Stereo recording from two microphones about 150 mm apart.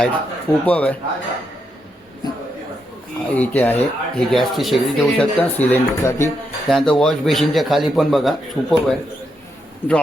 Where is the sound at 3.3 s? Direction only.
10° left (ahead or behind).